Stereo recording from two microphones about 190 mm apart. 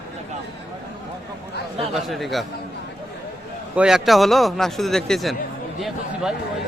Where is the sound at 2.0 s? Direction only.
Centre (ahead or behind).